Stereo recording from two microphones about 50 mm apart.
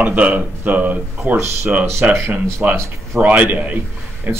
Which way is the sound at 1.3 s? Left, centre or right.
Right.